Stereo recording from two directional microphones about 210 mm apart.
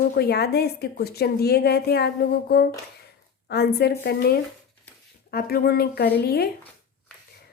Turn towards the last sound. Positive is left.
turn(degrees=50)  # may be behind; listen again after turning